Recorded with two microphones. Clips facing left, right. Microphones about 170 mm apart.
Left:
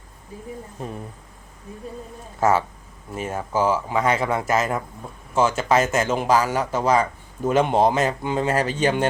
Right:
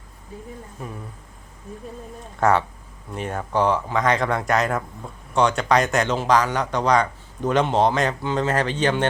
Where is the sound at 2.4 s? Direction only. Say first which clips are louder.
Even; 5° left (ahead or behind).